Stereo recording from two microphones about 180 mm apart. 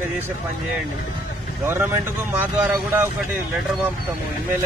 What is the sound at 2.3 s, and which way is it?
Speech, 10° right (ahead or behind).